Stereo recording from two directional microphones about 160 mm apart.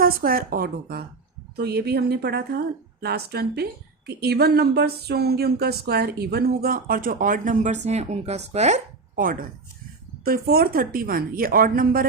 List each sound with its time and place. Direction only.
0.0 s a woman's voice: 65° right (ahead or behind)
1.5 s a woman's voice: 80° right; by 12.0 s 65° right (ahead or behind)